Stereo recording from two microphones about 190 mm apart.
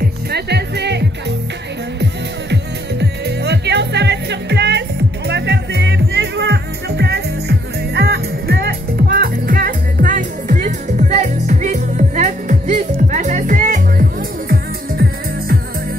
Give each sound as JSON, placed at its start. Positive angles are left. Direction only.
{"t": 0.0, "sound": "music", "side_deg": -60}
{"t": 2.5, "sound": "music", "side_deg": -60}